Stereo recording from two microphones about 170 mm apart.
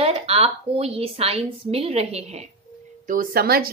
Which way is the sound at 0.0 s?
35° right (ahead or behind).